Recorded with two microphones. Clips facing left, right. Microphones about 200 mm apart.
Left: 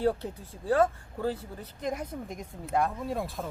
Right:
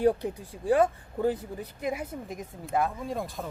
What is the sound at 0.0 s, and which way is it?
Speech, 15° right (ahead or behind).